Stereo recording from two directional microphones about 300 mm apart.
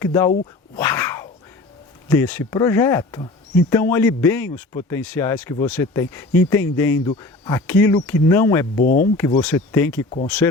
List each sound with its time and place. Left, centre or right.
0.0 s speech: centre
0.8 s a sound: centre
2.0 s speech: centre
8.8 s speech: left
9.1 s speech: centre